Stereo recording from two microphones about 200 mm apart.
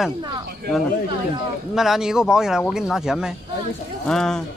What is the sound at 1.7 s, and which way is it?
Speech, centre (ahead or behind).